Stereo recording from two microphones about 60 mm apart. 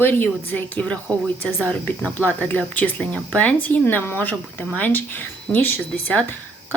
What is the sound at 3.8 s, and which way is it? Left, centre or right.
Speech, left.